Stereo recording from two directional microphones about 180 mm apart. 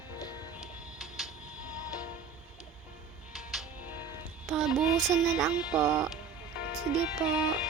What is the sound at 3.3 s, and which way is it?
Music, centre (ahead or behind).